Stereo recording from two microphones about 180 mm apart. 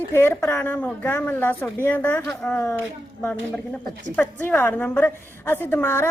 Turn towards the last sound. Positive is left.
turn(degrees=15)  # may be behind; listen again after turning